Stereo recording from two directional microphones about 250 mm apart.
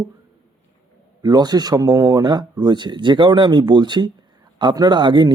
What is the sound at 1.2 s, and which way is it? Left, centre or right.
Speech, centre.